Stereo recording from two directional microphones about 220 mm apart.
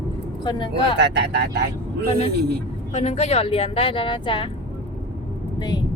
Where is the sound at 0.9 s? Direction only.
50° right (ahead or behind).